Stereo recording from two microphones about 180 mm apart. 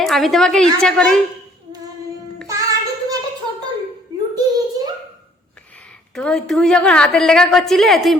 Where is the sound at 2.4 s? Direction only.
20° right (ahead or behind).